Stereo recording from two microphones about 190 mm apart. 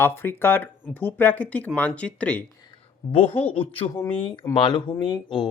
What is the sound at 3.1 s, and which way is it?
Speech, 30° left (ahead or behind).